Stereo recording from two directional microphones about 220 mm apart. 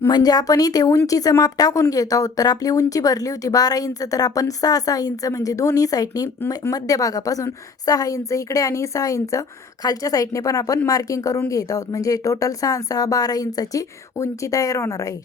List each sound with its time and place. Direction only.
0.0 s speech: 15° left (ahead or behind)